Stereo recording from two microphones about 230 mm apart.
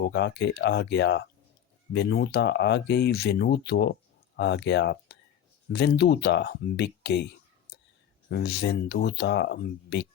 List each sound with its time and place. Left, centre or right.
0.0 s speech: left
8.3 s speech: left